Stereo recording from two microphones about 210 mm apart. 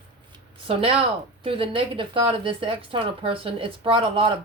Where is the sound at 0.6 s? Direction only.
25° right (ahead or behind).